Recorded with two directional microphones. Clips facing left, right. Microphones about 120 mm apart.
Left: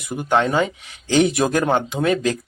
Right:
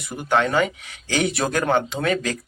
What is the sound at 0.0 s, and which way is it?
Speech, 20° left (ahead or behind).